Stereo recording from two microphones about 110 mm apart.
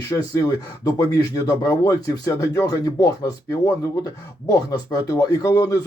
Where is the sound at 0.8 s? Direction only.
35° left (ahead or behind).